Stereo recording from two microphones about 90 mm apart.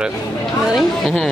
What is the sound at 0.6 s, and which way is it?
Speech, centre (ahead or behind).